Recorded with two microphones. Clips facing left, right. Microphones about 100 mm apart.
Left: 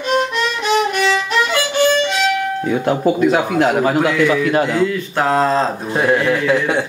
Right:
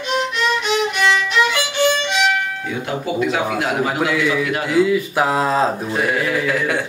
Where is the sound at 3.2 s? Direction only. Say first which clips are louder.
Left 5 dB; 40° left (ahead or behind).